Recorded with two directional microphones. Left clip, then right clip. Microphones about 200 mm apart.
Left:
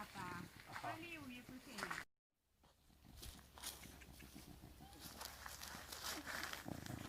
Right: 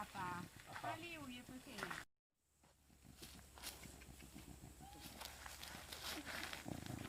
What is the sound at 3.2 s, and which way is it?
Wild animals, 5° right (ahead or behind).